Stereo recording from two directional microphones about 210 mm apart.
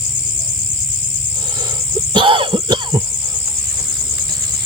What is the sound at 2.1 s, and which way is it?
Throat clearing, 25° right (ahead or behind).